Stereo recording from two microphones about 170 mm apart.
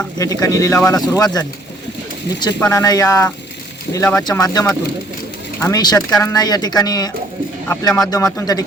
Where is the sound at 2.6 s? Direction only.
20° left (ahead or behind).